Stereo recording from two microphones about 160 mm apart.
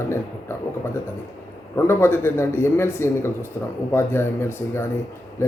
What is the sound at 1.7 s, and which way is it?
Speech, 15° left (ahead or behind).